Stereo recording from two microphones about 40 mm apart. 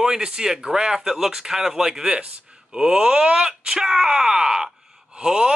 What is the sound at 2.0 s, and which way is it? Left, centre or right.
A man's voice, right.